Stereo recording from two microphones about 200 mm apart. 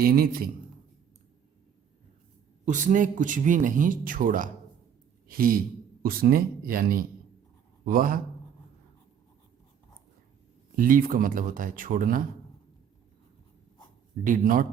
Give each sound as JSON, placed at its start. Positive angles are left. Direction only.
{"t": 0.0, "sound": "speech", "side_deg": -50}
{"t": 2.6, "sound": "speech", "side_deg": -40}
{"t": 10.8, "sound": "speech", "side_deg": -45}
{"t": 14.3, "sound": "speech", "side_deg": -45}